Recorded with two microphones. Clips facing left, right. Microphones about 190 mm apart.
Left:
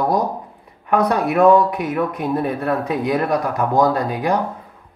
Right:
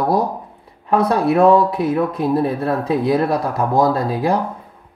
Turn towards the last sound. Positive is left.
turn(degrees=-30)  # may be behind; listen again after turning